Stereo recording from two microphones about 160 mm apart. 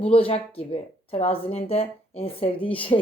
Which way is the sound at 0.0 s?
35° left (ahead or behind).